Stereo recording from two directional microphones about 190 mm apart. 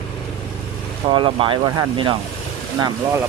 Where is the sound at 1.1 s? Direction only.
25° right (ahead or behind).